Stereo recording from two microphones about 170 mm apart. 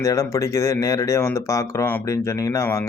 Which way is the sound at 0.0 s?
15° left (ahead or behind).